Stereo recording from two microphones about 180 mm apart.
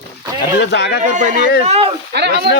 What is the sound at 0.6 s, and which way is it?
Speech, 70° left (ahead or behind).